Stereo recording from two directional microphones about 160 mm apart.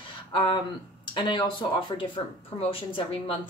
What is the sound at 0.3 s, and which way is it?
Speech, 30° left (ahead or behind).